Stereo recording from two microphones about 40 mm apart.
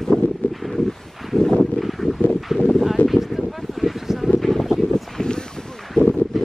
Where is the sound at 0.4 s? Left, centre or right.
Left.